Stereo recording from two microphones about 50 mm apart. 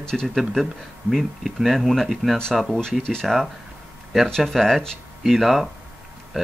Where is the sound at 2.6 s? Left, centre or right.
Centre.